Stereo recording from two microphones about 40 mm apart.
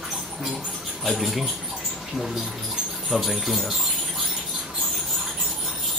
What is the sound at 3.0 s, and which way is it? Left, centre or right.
Speech, centre.